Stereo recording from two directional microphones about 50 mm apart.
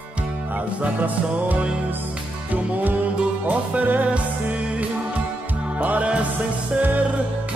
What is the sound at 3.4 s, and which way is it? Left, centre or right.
Music, right.